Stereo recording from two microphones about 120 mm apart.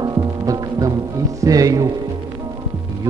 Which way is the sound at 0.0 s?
30° right (ahead or behind).